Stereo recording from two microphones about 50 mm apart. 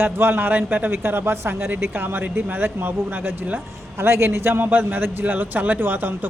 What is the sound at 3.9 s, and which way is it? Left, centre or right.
Speech, right.